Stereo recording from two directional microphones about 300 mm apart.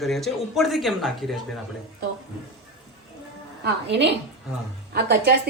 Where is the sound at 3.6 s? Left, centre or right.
Right.